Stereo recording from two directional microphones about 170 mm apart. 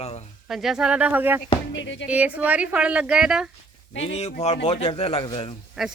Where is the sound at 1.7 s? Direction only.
90° left.